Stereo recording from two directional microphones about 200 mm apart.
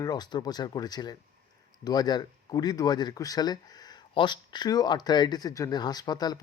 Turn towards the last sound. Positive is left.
turn(degrees=20)  # may be behind; listen again after turning